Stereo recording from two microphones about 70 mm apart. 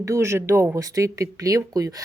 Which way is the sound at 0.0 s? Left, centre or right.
Right.